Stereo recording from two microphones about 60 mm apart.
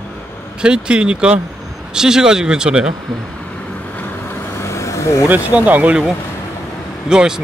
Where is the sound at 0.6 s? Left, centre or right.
Centre.